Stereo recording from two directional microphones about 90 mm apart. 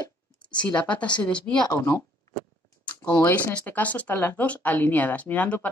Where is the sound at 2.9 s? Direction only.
15° left (ahead or behind).